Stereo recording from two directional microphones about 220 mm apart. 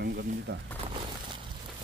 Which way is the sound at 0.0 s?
50° right (ahead or behind).